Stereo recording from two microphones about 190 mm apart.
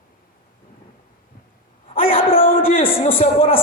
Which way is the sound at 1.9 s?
30° left (ahead or behind).